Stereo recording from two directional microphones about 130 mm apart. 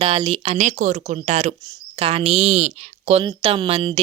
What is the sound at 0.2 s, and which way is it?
Speech, 40° right (ahead or behind).